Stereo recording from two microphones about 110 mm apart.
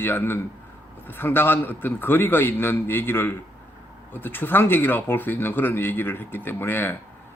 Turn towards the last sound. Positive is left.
turn(degrees=20)  # may be behind; listen again after turning